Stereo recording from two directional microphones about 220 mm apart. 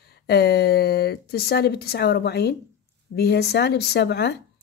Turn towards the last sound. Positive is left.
turn(degrees=50)  # may be behind; listen again after turning